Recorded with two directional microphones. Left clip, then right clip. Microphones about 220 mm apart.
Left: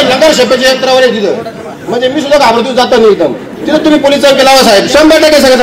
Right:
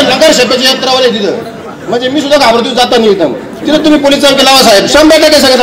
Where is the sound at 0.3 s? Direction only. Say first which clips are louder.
Even; 35° right (ahead or behind).